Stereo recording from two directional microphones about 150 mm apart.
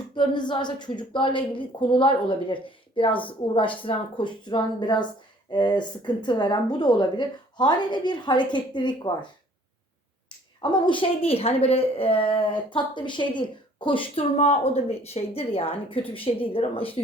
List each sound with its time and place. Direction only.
0.1 s a woman's voice: 30° left (ahead or behind)
10.2 s a woman's voice: 30° left (ahead or behind)